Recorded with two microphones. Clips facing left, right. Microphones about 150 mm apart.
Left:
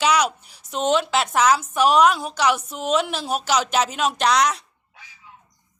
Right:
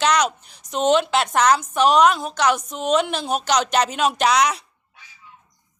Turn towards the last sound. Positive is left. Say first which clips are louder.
# right 1 dB
turn(degrees=0)  # may be behind; listen again after turning